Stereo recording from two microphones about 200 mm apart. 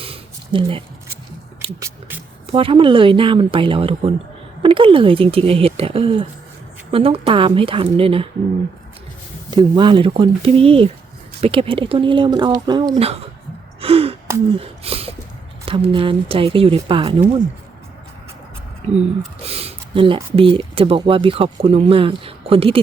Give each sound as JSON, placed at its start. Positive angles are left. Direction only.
{"t": 0.0, "sound": "a sound", "side_deg": -30}
{"t": 1.8, "sound": "speech", "side_deg": -10}
{"t": 2.5, "sound": "speech", "side_deg": -25}
{"t": 9.5, "sound": "speech", "side_deg": -25}
{"t": 13.8, "sound": "gasp", "side_deg": -30}
{"t": 14.6, "sound": "a sound", "side_deg": -30}
{"t": 15.6, "sound": "speech", "side_deg": -25}
{"t": 19.4, "sound": "speech", "side_deg": -30}